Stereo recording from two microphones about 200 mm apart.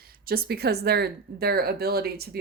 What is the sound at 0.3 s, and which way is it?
Speech, 50° right (ahead or behind).